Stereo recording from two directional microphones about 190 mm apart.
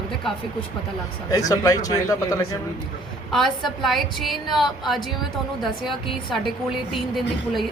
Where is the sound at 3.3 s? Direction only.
Centre (ahead or behind).